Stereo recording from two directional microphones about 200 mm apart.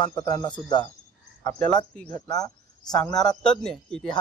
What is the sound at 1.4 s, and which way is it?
Speech, 5° left (ahead or behind).